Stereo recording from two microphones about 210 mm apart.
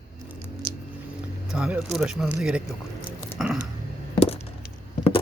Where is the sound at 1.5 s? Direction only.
5° right (ahead or behind).